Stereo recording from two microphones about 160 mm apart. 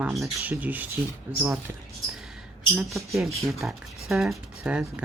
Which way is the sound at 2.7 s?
Centre (ahead or behind).